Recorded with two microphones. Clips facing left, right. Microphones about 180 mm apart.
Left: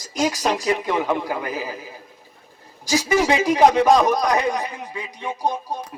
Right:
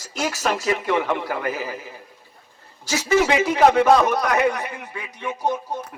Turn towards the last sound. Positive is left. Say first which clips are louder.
# even
turn(degrees=15)  # may be behind; listen again after turning